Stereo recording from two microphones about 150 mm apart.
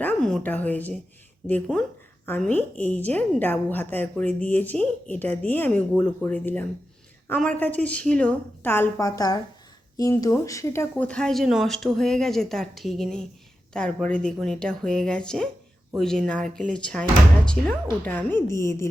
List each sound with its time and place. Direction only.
0.0 s speech: 5° left (ahead or behind)
2.2 s a woman's voice: 10° left (ahead or behind)
10.9 s a woman's voice: 5° left (ahead or behind)